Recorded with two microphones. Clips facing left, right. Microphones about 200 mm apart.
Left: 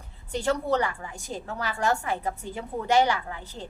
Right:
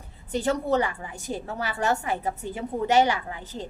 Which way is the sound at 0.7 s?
15° right (ahead or behind).